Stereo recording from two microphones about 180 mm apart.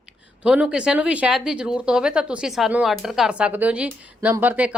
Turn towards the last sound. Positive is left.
turn(degrees=-10)  # may be behind; listen again after turning